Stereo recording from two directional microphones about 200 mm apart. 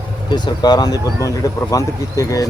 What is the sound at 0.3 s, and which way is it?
Speech, 20° left (ahead or behind).